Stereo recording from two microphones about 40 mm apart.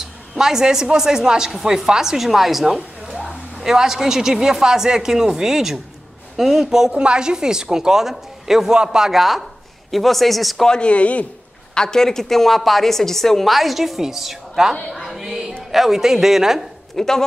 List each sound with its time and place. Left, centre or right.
0.0 s a woman's voice: centre
6.9 s a woman's voice: right; by 8.7 s centre
8.7 s a woman's voice: centre
10.7 s speech: left
11.7 s a woman's voice: centre
14.9 s a sound: centre
15.7 s a woman's voice: centre
16.9 s speech: centre